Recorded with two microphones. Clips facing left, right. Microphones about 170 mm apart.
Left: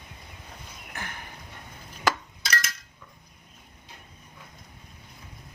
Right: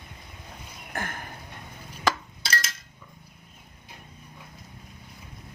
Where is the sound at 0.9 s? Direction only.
50° right (ahead or behind).